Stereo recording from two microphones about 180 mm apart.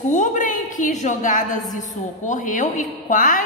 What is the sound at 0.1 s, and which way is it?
A woman's voice, 45° left (ahead or behind).